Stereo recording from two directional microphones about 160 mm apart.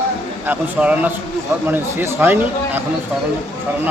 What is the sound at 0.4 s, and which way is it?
A man's voice, 10° right (ahead or behind).